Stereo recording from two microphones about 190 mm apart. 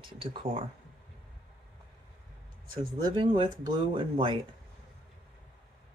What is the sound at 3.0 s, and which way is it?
Speech, 25° right (ahead or behind).